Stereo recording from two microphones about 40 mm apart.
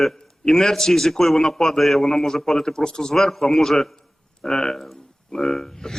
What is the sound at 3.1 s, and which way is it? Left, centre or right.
Speech, centre.